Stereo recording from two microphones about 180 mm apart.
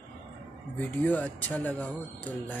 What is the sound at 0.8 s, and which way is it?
Speech, 10° left (ahead or behind).